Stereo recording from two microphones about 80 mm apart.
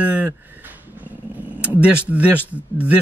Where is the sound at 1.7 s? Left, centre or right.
Centre.